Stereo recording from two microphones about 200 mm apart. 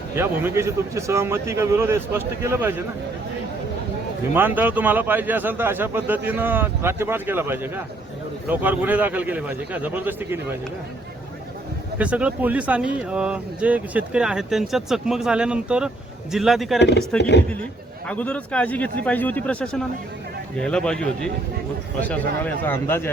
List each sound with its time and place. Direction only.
0.2 s a man's voice: 10° right (ahead or behind)
4.4 s a man's voice: 10° right (ahead or behind)
11.9 s speech: 5° right (ahead or behind)
17.2 s speech: 60° left (ahead or behind)
18.1 s speech: 5° left (ahead or behind)